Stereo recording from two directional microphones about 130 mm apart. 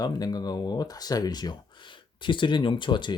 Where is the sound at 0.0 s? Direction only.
30° left (ahead or behind).